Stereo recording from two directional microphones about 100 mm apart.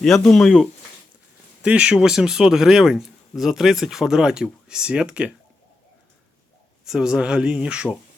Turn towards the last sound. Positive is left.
turn(degrees=-10)  # may be behind; listen again after turning